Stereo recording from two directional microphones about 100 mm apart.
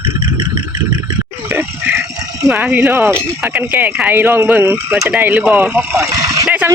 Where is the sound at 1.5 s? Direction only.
25° right (ahead or behind).